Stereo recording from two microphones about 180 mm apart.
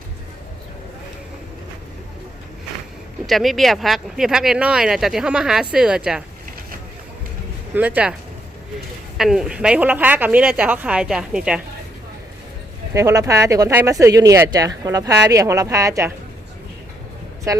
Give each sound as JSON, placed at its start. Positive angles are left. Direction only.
{"t": 3.2, "sound": "speech", "side_deg": 0}
{"t": 7.7, "sound": "speech", "side_deg": -10}
{"t": 9.1, "sound": "speech", "side_deg": 0}
{"t": 12.9, "sound": "speech", "side_deg": -15}